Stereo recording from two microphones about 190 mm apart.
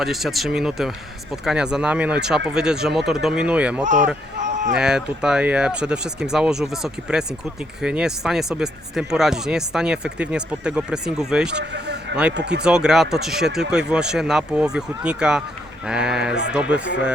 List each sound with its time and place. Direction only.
0.0 s speech: centre (ahead or behind)
4.4 s a sound: 40° right (ahead or behind)
4.7 s speech: 5° right (ahead or behind)
11.5 s a sound: 65° right (ahead or behind)
12.3 s speech: 60° right (ahead or behind)
12.6 s speech: 5° right (ahead or behind)